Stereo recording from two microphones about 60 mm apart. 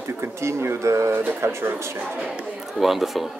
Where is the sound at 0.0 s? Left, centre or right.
Right.